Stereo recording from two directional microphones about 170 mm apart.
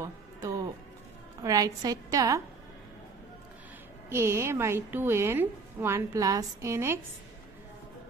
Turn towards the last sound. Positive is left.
turn(degrees=-15)  # may be behind; listen again after turning